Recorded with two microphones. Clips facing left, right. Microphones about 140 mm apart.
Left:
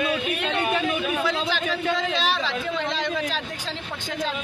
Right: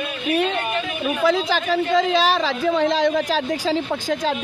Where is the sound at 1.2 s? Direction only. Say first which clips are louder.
Right 6 dB; 40° right (ahead or behind).